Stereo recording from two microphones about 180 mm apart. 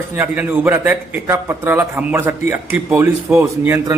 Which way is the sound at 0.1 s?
10° right (ahead or behind).